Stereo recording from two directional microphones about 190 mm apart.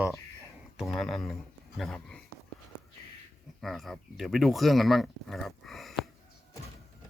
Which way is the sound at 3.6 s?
Centre (ahead or behind).